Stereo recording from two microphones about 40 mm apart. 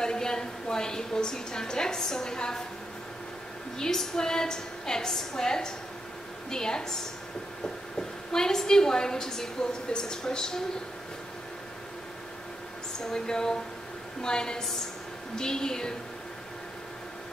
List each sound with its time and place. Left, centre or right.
0.0 s a woman's voice: centre
3.7 s a woman's voice: centre
8.3 s a woman's voice: centre
13.1 s a woman's voice: centre